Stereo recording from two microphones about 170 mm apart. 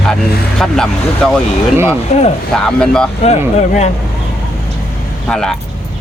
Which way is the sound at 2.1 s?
40° left (ahead or behind).